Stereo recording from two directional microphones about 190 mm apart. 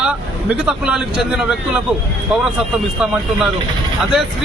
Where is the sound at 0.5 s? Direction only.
5° right (ahead or behind).